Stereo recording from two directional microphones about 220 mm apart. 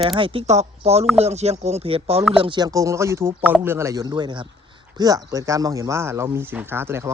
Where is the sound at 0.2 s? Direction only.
25° right (ahead or behind).